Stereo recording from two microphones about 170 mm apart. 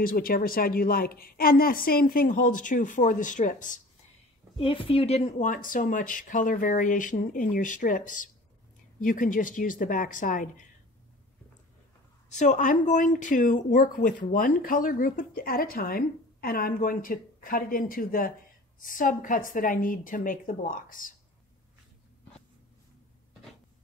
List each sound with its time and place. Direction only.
0.0 s speech: 55° left (ahead or behind)
4.6 s speech: 30° left (ahead or behind); by 10.5 s 50° left (ahead or behind)
12.4 s speech: 45° left (ahead or behind)